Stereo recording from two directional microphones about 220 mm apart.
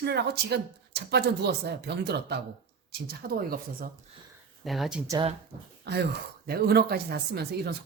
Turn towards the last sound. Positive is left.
turn(degrees=-45)  # may be behind; listen again after turning